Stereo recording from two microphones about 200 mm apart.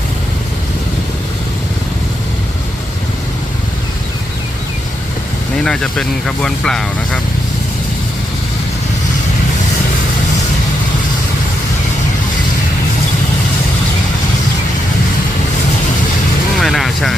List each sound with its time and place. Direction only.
5.6 s speech: 5° left (ahead or behind)
16.6 s speech: centre (ahead or behind)